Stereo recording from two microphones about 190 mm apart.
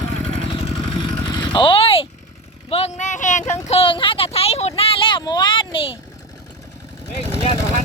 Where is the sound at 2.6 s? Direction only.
30° left (ahead or behind).